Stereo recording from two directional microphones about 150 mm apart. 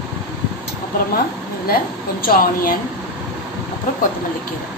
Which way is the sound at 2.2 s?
75° left (ahead or behind).